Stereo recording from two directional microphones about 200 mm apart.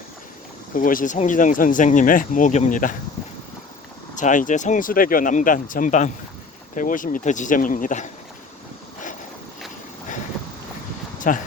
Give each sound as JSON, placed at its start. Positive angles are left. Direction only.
{"t": 0.7, "sound": "speech", "side_deg": 45}
{"t": 4.1, "sound": "speech", "side_deg": 40}
{"t": 11.2, "sound": "speech", "side_deg": 40}